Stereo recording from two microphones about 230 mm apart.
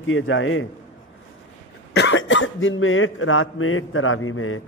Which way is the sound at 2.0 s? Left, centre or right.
Left.